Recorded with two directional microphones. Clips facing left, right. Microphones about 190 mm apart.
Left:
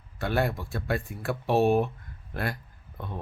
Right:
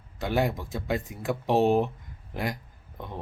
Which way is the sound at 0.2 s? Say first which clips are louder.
Right 1 dB; 15° right (ahead or behind).